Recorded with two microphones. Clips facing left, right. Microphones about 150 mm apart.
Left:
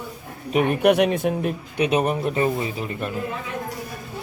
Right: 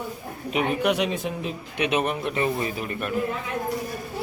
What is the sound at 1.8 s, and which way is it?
Speech, 35° left (ahead or behind).